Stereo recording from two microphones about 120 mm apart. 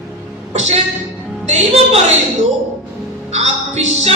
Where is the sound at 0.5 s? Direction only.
65° right (ahead or behind).